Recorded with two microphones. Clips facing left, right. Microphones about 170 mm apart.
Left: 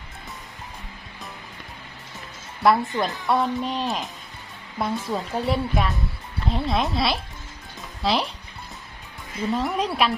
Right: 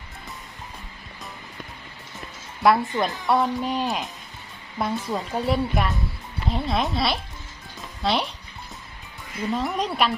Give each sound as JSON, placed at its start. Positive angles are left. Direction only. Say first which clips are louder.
{"t": 2.6, "sound": "a woman's voice", "louder": "even", "side_deg": 0}
{"t": 9.5, "sound": "a woman's voice", "louder": "left 1 dB", "side_deg": 0}